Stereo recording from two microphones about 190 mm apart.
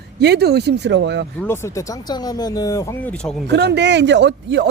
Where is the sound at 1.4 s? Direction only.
15° left (ahead or behind).